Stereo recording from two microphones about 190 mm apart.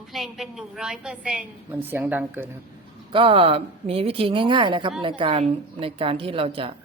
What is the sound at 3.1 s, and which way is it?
A woman's voice, 30° right (ahead or behind).